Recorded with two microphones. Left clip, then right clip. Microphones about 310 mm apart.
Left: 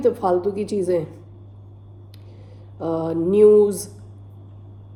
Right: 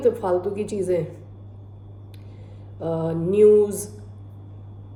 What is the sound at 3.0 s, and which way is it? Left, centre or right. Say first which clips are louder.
Mantra: left 4 dB; left.